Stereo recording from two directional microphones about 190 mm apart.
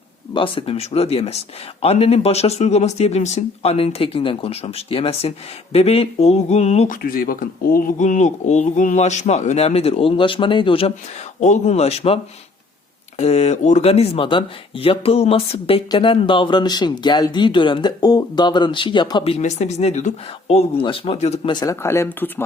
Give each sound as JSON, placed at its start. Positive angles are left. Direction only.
{"t": 0.3, "sound": "speech", "side_deg": 30}
{"t": 21.5, "sound": "speech", "side_deg": 20}